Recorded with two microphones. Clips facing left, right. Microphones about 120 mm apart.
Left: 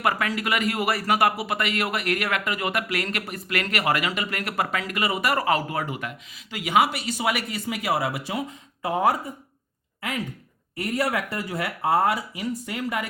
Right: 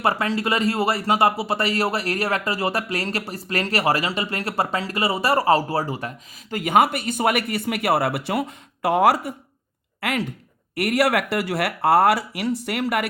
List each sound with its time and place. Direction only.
0.0 s speech: 30° right (ahead or behind); by 13.1 s 70° right (ahead or behind)